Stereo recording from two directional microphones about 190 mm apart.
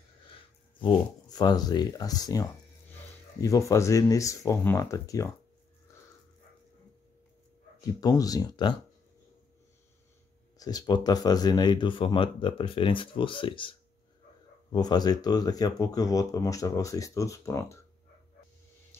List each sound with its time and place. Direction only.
0.7 s speech: 25° left (ahead or behind)
8.0 s speech: 20° left (ahead or behind)
10.6 s speech: 20° left (ahead or behind)